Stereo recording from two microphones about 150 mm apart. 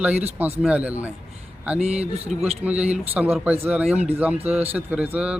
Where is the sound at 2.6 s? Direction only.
10° right (ahead or behind).